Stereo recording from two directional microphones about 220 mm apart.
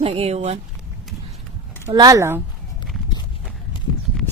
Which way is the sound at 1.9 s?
15° right (ahead or behind).